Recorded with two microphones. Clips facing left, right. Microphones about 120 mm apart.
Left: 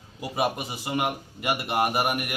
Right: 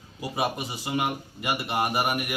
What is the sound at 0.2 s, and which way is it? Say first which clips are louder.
Speech: left 1 dB; centre (ahead or behind).